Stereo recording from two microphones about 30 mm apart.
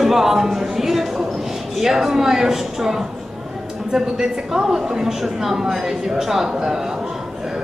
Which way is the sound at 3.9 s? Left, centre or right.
Centre.